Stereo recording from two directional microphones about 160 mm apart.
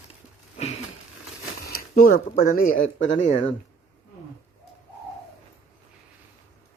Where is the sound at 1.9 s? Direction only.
60° left (ahead or behind).